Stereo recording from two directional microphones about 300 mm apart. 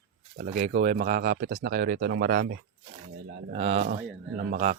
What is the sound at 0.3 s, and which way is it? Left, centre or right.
Speech, right.